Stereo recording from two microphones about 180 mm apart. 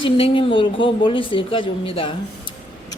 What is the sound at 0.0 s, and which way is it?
Speech, 30° left (ahead or behind).